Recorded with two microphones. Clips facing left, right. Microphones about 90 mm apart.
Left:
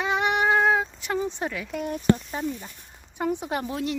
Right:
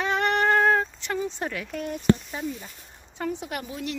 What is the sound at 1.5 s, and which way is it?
Speech, 5° left (ahead or behind).